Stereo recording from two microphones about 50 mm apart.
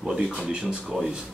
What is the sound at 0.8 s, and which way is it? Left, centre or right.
Speech, centre.